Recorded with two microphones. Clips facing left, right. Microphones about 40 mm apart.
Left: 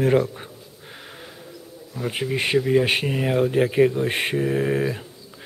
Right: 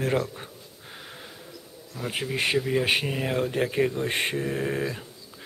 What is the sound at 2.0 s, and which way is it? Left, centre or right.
Speech, centre.